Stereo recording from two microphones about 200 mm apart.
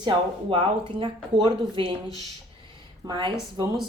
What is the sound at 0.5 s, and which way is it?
Speech, 25° right (ahead or behind).